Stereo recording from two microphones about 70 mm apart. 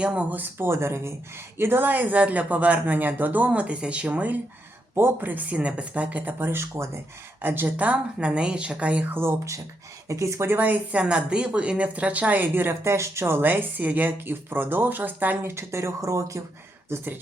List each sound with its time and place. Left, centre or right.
0.0 s speech: centre
0.7 s speech: right; by 4.4 s centre
4.9 s speech: right
7.4 s speech: right
9.1 s speech: right
10.5 s speech: right
13.5 s speech: right
15.5 s speech: right
16.9 s speech: right